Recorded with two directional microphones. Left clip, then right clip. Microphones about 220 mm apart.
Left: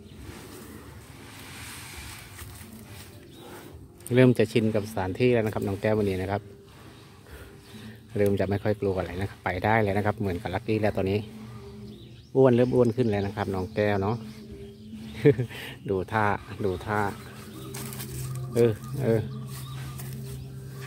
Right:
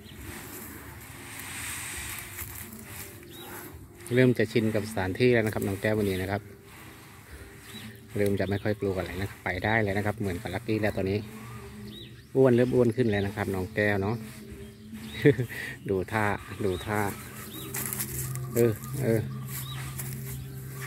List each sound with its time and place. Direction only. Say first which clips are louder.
4.1 s speech: left 3 dB; 15° left (ahead or behind)
4.9 s speech: right 1 dB; 5° left (ahead or behind)
8.2 s speech: left 3 dB; 10° left (ahead or behind)
12.4 s speech: left 2 dB; 5° left (ahead or behind)
18.5 s speech: left 2 dB; 5° left (ahead or behind)